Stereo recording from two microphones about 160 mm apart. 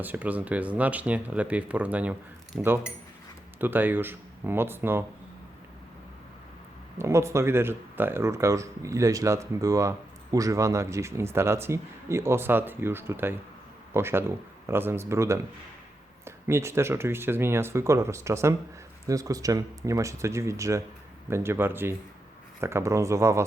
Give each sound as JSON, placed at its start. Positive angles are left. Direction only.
{"t": 0.0, "sound": "speech", "side_deg": -10}
{"t": 7.0, "sound": "speech", "side_deg": -15}